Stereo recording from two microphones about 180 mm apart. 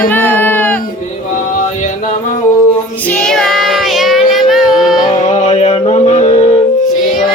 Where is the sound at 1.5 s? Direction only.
45° left (ahead or behind).